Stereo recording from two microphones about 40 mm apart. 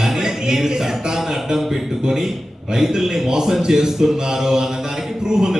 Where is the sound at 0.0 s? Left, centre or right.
Centre.